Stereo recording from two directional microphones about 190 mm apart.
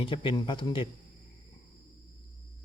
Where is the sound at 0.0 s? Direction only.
25° left (ahead or behind).